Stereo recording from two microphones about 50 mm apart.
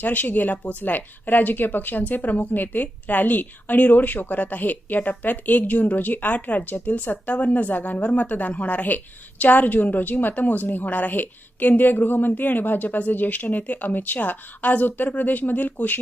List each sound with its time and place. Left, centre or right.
0.0 s speech: left